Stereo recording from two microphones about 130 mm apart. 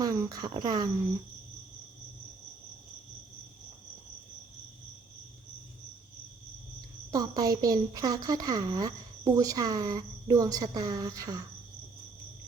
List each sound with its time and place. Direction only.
0.0 s a woman's voice: 25° right (ahead or behind)
7.1 s a woman's voice: 30° right (ahead or behind)